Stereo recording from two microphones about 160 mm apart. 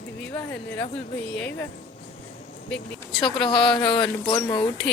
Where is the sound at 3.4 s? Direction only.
30° left (ahead or behind).